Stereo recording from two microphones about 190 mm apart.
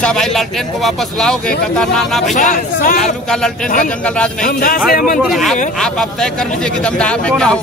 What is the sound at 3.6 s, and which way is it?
Speech, 45° left (ahead or behind).